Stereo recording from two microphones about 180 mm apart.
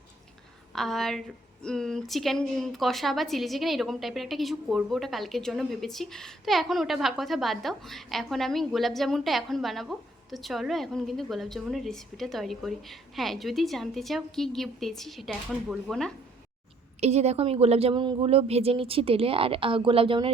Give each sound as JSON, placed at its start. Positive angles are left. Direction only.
{"t": 0.7, "sound": "a woman's voice", "side_deg": 0}
{"t": 17.0, "sound": "a woman's voice", "side_deg": -35}